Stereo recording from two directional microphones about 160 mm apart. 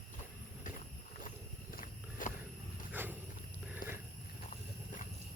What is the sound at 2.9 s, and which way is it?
Wild animals, 10° right (ahead or behind).